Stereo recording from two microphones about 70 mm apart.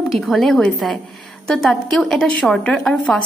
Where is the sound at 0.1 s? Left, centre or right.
Centre.